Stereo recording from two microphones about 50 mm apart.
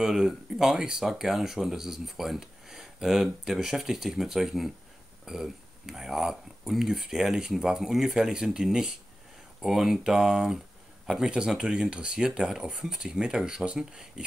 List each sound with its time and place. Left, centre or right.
0.0 s speech: centre